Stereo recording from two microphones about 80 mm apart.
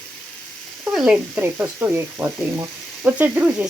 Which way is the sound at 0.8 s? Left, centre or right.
Centre.